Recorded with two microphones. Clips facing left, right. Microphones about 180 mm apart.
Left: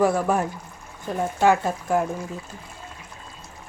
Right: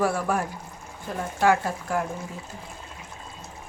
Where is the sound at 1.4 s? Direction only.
20° left (ahead or behind).